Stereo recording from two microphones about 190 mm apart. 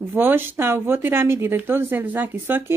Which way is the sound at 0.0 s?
10° right (ahead or behind).